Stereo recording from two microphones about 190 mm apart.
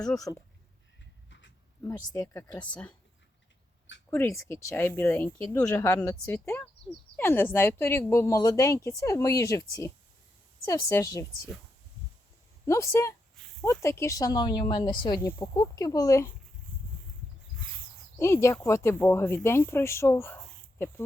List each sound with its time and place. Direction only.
0.3 s speech: 15° left (ahead or behind)
1.3 s a sound: 75° left (ahead or behind)
1.8 s speech: 15° left (ahead or behind)
4.1 s speech: 10° left (ahead or behind)
12.6 s speech: 15° left (ahead or behind)
18.2 s speech: 15° left (ahead or behind)